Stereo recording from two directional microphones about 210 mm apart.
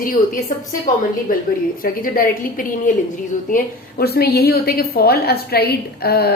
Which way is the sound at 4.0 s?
50° left (ahead or behind).